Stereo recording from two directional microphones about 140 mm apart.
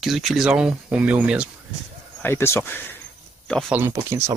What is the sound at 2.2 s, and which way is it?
Speech, 15° left (ahead or behind).